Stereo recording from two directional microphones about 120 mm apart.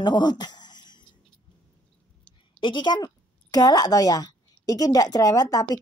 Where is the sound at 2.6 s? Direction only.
40° left (ahead or behind).